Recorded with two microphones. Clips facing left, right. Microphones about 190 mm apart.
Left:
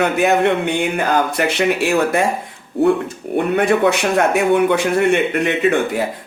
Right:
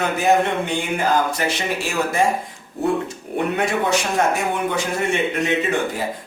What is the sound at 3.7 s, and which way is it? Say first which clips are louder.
A man's voice: left 6 dB; 60° left (ahead or behind).